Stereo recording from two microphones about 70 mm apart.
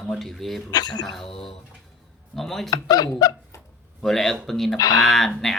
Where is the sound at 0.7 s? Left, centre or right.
Left.